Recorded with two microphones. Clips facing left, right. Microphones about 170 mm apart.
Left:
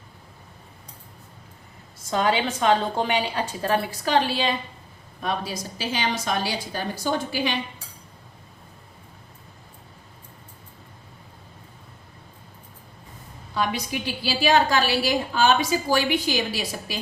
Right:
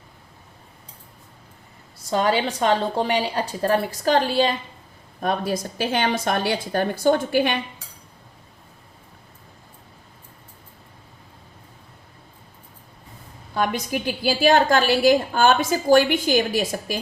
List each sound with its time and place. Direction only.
2.0 s a woman's voice: 40° right (ahead or behind); by 7.6 s 55° right (ahead or behind)
13.5 s a woman's voice: 50° right (ahead or behind)